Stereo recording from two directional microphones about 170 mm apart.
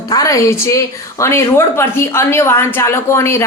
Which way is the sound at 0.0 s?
20° left (ahead or behind).